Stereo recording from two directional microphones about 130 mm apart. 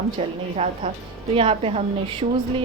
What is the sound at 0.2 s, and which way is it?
A woman's voice, 50° right (ahead or behind).